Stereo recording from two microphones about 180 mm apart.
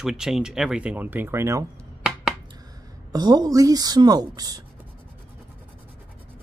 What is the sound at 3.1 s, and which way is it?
Speech, 20° right (ahead or behind).